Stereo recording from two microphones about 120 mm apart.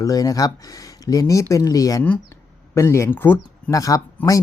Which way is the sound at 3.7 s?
30° left (ahead or behind).